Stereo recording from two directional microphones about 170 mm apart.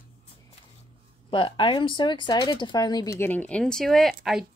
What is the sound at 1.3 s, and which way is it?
Speech, 30° left (ahead or behind).